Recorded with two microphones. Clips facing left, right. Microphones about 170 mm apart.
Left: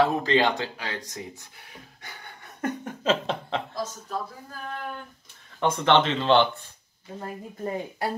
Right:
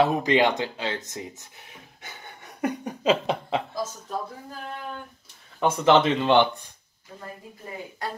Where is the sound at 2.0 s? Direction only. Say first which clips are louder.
Right 3 dB; 20° right (ahead or behind).